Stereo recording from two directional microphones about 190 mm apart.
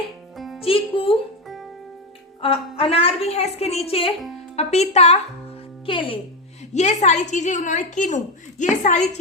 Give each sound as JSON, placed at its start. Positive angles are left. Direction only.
{"t": 0.3, "sound": "music", "side_deg": 0}
{"t": 0.6, "sound": "speech", "side_deg": 30}
{"t": 2.4, "sound": "a woman's voice", "side_deg": 30}
{"t": 6.7, "sound": "a woman's voice", "side_deg": 40}